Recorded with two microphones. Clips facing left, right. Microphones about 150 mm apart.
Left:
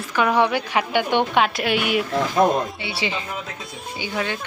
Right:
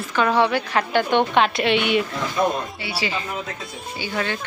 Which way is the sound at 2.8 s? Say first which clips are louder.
Even; 20° left (ahead or behind).